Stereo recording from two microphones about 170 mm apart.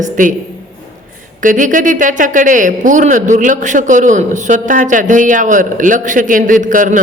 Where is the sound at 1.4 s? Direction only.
50° right (ahead or behind).